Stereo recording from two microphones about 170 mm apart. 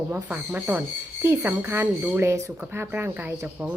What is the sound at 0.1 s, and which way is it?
A woman's voice, 10° right (ahead or behind).